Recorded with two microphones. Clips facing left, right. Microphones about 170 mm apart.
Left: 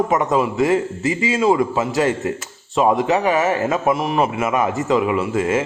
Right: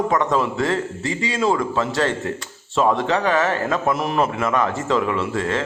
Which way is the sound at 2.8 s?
5° left (ahead or behind).